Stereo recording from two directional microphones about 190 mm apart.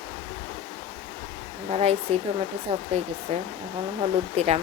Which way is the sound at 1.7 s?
35° right (ahead or behind).